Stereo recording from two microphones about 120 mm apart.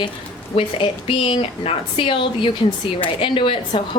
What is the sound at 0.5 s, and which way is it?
A woman's voice, 50° left (ahead or behind).